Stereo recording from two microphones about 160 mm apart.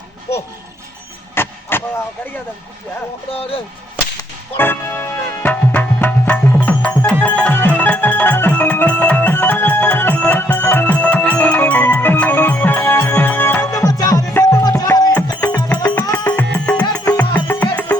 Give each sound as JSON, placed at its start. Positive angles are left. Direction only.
{"t": 1.4, "sound": "vehicle", "side_deg": 15}
{"t": 3.3, "sound": "speech", "side_deg": 35}
{"t": 4.5, "sound": "music", "side_deg": 15}
{"t": 15.4, "sound": "music", "side_deg": 10}